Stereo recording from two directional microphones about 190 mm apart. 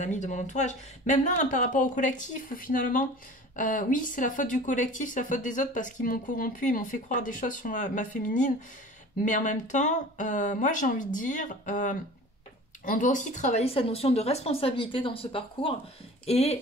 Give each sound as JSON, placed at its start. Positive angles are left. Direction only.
{"t": 0.0, "sound": "speech", "side_deg": 40}